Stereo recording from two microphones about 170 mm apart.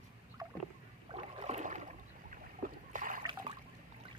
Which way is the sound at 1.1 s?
40° right (ahead or behind).